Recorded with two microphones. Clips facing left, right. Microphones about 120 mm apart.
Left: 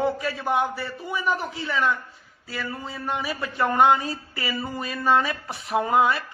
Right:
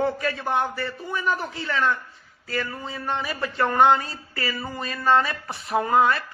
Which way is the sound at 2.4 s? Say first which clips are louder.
Right 4 dB; 5° left (ahead or behind).